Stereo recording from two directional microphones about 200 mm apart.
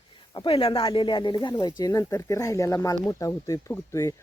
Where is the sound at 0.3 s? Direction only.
25° left (ahead or behind).